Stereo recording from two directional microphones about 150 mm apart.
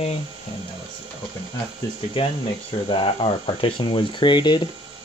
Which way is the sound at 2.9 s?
35° left (ahead or behind).